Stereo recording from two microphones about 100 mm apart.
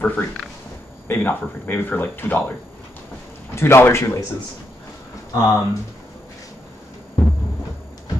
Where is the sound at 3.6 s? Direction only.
25° left (ahead or behind).